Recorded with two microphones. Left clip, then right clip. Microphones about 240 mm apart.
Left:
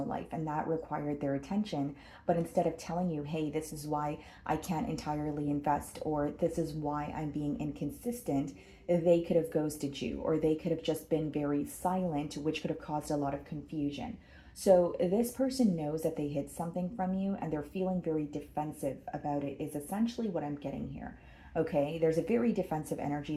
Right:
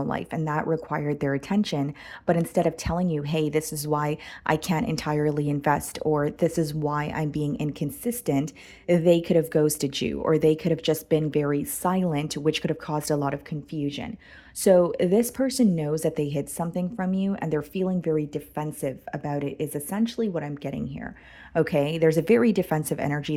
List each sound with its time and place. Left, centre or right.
0.1 s a woman's voice: right